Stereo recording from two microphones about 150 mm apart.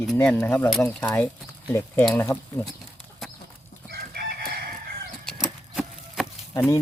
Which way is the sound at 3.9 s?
90° right.